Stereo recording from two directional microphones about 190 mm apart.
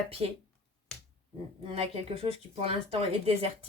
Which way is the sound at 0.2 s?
25° right (ahead or behind).